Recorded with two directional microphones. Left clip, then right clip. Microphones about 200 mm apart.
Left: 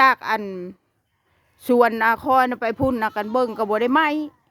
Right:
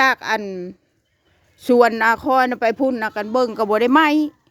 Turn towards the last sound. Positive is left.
turn(degrees=-15)  # may be behind; listen again after turning